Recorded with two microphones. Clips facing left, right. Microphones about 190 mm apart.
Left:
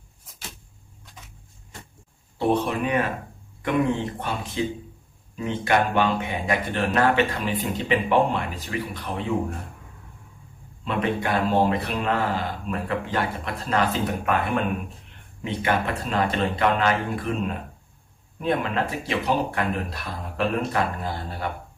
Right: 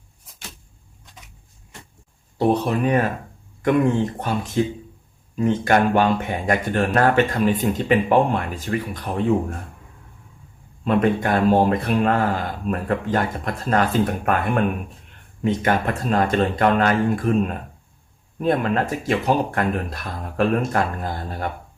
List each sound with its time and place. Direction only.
2.5 s speech: 40° right (ahead or behind)
10.8 s speech: 45° right (ahead or behind)